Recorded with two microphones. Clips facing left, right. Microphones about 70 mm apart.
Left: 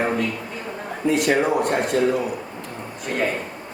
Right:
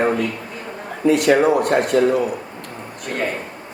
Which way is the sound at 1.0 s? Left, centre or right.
Right.